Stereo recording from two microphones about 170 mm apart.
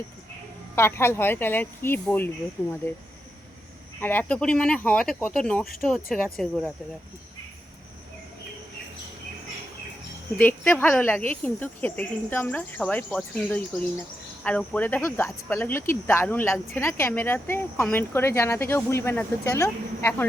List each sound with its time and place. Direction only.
0.8 s speech: 15° left (ahead or behind)
4.0 s speech: 10° left (ahead or behind)
10.3 s speech: 10° left (ahead or behind)